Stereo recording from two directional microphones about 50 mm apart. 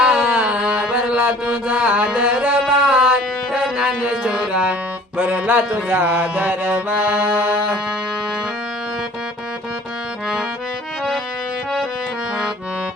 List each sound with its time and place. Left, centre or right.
0.2 s music: right
0.9 s music: right
5.1 s music: right